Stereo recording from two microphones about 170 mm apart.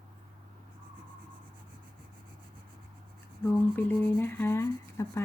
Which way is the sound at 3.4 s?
10° left (ahead or behind).